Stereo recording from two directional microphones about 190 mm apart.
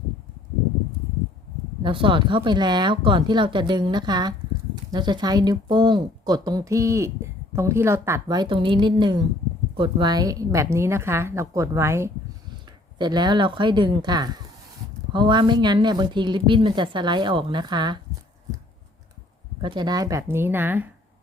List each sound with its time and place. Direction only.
1.8 s speech: 25° right (ahead or behind)
19.6 s speech: 20° right (ahead or behind)